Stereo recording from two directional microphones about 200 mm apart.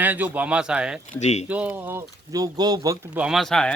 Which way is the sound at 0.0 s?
10° right (ahead or behind).